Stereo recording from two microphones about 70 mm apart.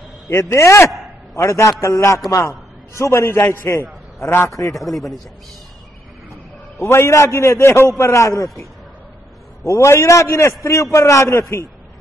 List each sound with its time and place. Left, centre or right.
0.5 s a man's voice: left
4.7 s speech: centre
6.8 s a man's voice: left
9.7 s a man's voice: left